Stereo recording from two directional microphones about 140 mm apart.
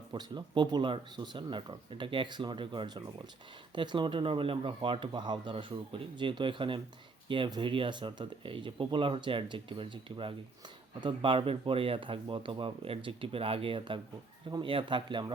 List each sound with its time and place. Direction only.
0.1 s speech: 30° right (ahead or behind)